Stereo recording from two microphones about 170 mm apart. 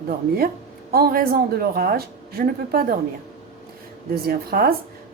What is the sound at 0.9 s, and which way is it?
A woman's voice, 65° right (ahead or behind).